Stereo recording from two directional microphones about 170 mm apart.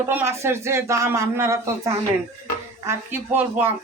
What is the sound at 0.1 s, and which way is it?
Speech, 15° right (ahead or behind).